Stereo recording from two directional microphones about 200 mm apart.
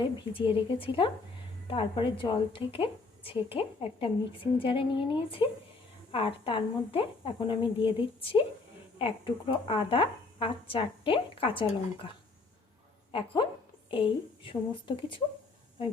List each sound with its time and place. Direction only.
0.0 s a woman's voice: 25° left (ahead or behind)